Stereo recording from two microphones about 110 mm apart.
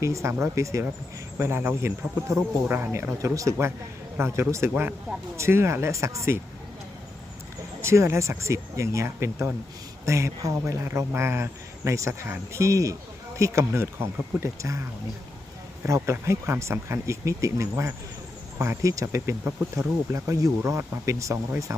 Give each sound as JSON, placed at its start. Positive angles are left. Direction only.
{"t": 0.0, "sound": "a man's voice", "side_deg": -25}
{"t": 7.8, "sound": "a man's voice", "side_deg": -25}
{"t": 15.9, "sound": "a man's voice", "side_deg": -25}